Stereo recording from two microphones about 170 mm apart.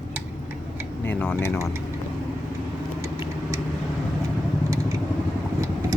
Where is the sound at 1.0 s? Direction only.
10° left (ahead or behind).